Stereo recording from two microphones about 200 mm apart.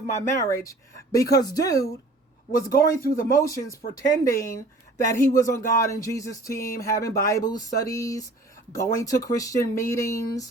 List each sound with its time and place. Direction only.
0.2 s speech: 15° left (ahead or behind)
2.9 s speech: 15° left (ahead or behind)